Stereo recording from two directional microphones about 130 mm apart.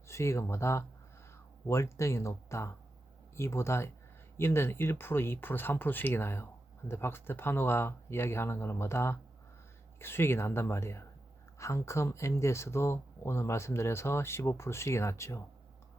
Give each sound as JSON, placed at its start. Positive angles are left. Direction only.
{"t": 0.1, "sound": "speech", "side_deg": 20}